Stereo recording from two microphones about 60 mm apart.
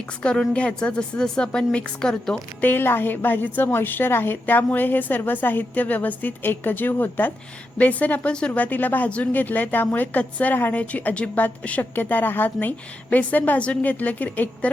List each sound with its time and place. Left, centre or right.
0.2 s a woman's voice: centre
2.6 s a woman's voice: left